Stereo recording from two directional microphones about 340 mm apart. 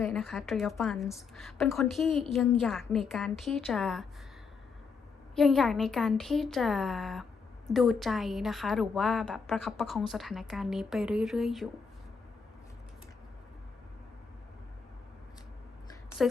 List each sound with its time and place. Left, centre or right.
0.0 s a woman's voice: centre
5.3 s a woman's voice: centre
16.2 s a woman's voice: centre